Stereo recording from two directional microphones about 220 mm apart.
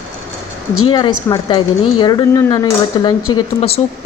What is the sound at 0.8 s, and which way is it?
A woman's voice, 20° left (ahead or behind).